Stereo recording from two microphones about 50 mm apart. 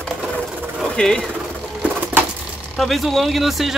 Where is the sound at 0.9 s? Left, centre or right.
Centre.